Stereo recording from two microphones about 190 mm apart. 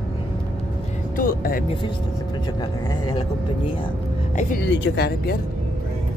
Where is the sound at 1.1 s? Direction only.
50° left (ahead or behind).